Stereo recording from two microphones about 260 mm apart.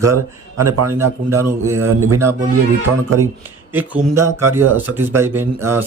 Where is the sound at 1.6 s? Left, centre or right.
Right.